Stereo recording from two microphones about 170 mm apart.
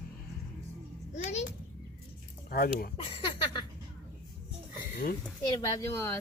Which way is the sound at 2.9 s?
30° left (ahead or behind).